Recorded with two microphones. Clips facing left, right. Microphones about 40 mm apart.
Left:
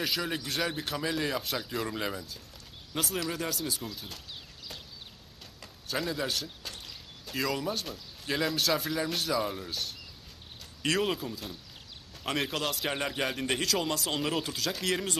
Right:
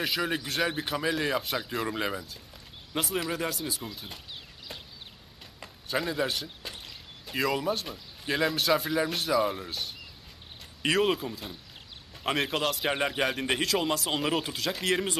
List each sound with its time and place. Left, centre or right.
0.0 s speech: centre
5.5 s a man's voice: centre
10.9 s speech: centre